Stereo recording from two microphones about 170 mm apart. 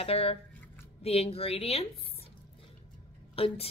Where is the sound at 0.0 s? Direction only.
35° left (ahead or behind).